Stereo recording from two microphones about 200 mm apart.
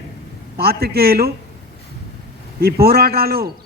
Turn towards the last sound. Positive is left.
turn(degrees=-50)  # may be behind; listen again after turning